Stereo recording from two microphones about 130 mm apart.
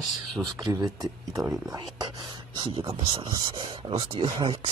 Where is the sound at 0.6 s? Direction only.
30° right (ahead or behind).